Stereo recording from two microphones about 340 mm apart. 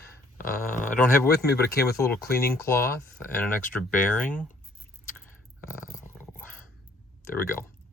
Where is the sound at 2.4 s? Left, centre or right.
Centre.